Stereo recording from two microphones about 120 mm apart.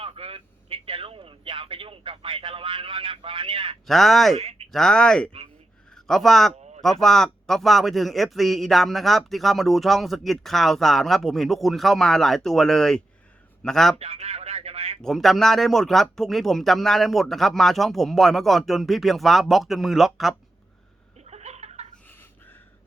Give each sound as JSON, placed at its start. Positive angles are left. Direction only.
{"t": 0.0, "sound": "vehicle", "side_deg": -55}
{"t": 3.8, "sound": "a man's voice", "side_deg": 0}
{"t": 4.4, "sound": "speech", "side_deg": -60}
{"t": 4.7, "sound": "a man's voice", "side_deg": 5}
{"t": 14.0, "sound": "a sound", "side_deg": -55}
{"t": 15.0, "sound": "a man's voice", "side_deg": 0}
{"t": 21.2, "sound": "a sound", "side_deg": -65}